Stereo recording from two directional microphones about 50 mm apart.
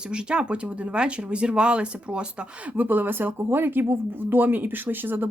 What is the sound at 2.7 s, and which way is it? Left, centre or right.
Speech, right.